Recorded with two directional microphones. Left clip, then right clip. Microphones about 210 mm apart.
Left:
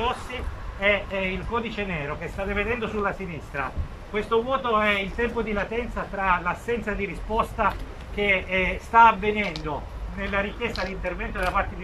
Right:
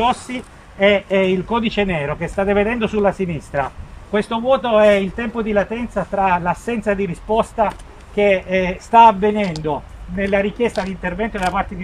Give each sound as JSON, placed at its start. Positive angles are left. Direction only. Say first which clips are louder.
{"t": 0.7, "sound": "speech", "louder": "right 9 dB", "side_deg": -45}